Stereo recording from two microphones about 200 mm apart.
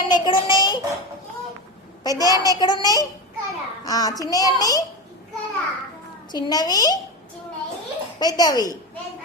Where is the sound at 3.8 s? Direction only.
20° left (ahead or behind).